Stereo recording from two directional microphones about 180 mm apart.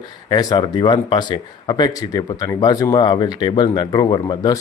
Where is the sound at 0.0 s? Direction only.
20° left (ahead or behind).